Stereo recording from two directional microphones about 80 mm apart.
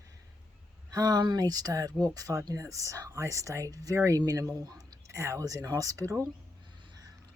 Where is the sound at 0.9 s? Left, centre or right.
Right.